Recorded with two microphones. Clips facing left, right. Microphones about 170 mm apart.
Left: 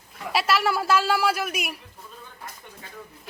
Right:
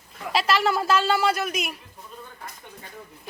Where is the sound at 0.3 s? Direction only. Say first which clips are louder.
Right 1 dB; 5° left (ahead or behind).